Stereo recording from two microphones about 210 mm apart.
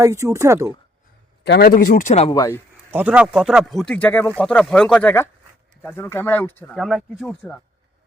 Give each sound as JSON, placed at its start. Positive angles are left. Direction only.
{"t": 0.0, "sound": "speech", "side_deg": -15}
{"t": 1.5, "sound": "speech", "side_deg": 50}
{"t": 2.3, "sound": "speech", "side_deg": 15}
{"t": 2.9, "sound": "speech", "side_deg": -5}